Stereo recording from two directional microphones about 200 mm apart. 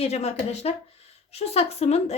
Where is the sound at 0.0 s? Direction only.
30° left (ahead or behind).